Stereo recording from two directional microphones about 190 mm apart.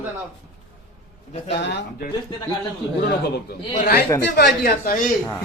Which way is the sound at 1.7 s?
60° left (ahead or behind).